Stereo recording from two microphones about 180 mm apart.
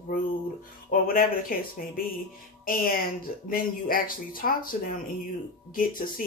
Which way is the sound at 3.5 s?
50° left (ahead or behind).